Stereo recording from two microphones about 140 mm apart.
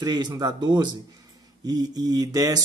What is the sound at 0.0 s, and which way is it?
Speech, 30° right (ahead or behind).